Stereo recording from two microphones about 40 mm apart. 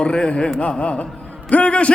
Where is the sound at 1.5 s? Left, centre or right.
Left.